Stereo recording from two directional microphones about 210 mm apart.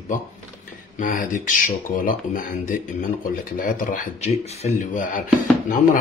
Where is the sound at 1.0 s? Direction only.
40° left (ahead or behind).